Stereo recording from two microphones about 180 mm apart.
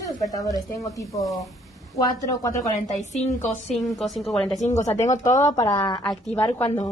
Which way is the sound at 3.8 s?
Centre (ahead or behind).